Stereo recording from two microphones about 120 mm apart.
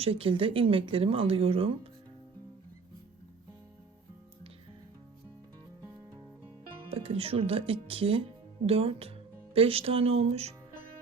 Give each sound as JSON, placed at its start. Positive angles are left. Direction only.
{"t": 0.0, "sound": "speech", "side_deg": -55}
{"t": 6.8, "sound": "speech", "side_deg": -55}